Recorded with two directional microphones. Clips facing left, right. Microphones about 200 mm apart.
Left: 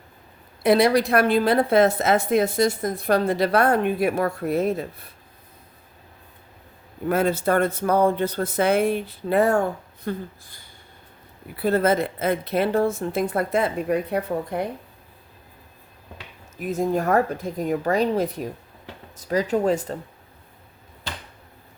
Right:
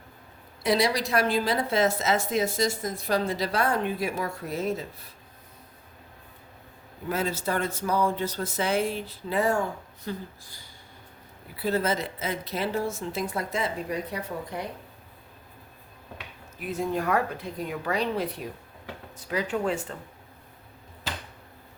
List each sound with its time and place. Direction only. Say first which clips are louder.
0.6 s a woman's voice: left 7 dB; 55° left (ahead or behind)
7.1 s a woman's voice: left 8 dB; 55° left (ahead or behind)
16.6 s speech: left 5 dB; 45° left (ahead or behind)